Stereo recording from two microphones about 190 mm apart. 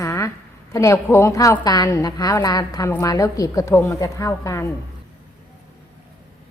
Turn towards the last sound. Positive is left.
turn(degrees=15)  # may be behind; listen again after turning